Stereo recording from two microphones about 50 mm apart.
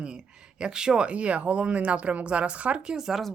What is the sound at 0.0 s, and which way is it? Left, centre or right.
Speech, centre.